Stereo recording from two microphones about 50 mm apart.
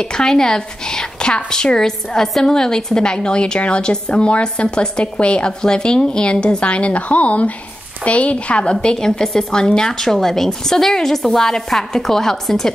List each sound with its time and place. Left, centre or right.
0.0 s a woman's voice: centre
8.7 s a woman's voice: centre